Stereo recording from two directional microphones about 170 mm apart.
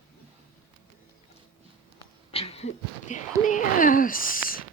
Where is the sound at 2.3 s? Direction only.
35° left (ahead or behind); by 4.6 s 55° left (ahead or behind).